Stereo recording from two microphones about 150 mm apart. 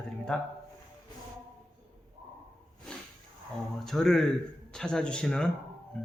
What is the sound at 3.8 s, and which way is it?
Speech, centre (ahead or behind).